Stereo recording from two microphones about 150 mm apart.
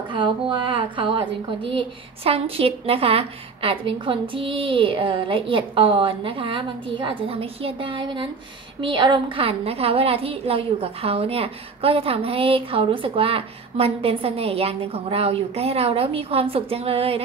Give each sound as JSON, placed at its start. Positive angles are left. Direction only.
{"t": 0.1, "sound": "a woman's voice", "side_deg": -30}